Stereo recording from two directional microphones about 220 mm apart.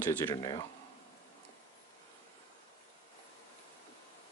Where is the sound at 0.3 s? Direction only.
20° left (ahead or behind).